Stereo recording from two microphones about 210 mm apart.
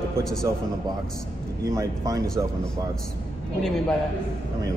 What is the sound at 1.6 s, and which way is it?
Speech, 15° right (ahead or behind).